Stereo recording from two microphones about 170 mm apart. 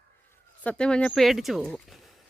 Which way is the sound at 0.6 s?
5° left (ahead or behind).